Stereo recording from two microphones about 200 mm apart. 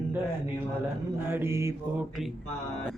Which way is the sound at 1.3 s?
10° right (ahead or behind).